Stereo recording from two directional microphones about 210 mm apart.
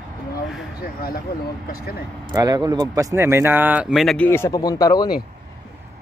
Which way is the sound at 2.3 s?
20° right (ahead or behind).